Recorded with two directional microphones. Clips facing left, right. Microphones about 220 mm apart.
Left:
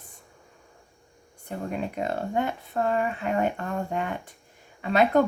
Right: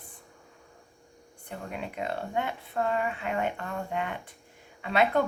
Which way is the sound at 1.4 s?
40° left (ahead or behind).